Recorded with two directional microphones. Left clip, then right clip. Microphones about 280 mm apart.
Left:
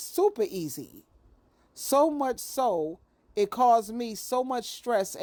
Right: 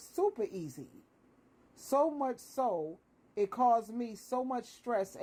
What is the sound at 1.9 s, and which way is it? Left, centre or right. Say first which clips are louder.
Speech: left 7 dB; left.